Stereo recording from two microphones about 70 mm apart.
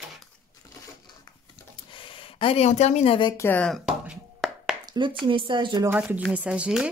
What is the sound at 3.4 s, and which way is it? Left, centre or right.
Speech, left.